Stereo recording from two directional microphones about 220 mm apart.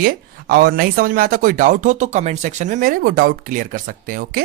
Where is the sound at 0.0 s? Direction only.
40° right (ahead or behind).